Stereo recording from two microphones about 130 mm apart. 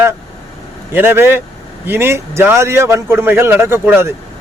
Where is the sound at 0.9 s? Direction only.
15° right (ahead or behind).